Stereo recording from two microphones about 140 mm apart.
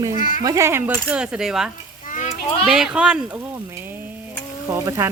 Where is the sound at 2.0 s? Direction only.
65° left (ahead or behind).